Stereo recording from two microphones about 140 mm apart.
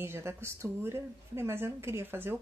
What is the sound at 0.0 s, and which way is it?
A woman's voice, 20° right (ahead or behind).